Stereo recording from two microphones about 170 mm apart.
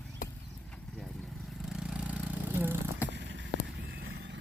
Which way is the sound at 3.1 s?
90° right.